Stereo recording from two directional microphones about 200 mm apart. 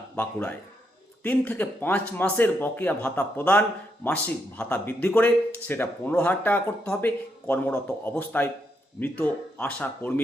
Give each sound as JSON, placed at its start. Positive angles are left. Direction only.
{"t": 0.2, "sound": "speech", "side_deg": 10}